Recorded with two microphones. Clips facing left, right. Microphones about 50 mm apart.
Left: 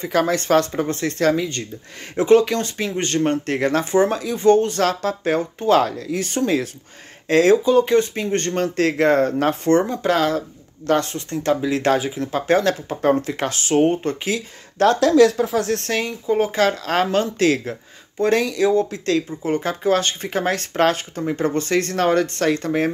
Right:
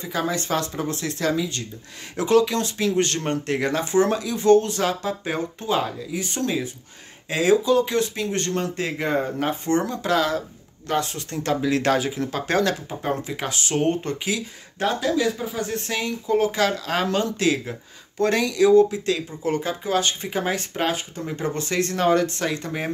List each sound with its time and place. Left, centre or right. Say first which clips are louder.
0.0 s speech: left 6 dB; left
5.7 s speech: left 8 dB; left
7.6 s speech: left 4 dB; left
9.8 s speech: left 3 dB; left
12.8 s speech: left 8 dB; left
14.8 s speech: left 9 dB; left
16.1 s speech: right 1 dB; left